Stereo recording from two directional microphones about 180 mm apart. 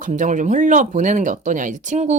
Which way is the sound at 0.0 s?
45° right (ahead or behind).